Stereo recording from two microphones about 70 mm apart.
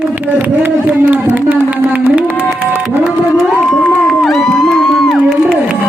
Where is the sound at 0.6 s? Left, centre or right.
Right.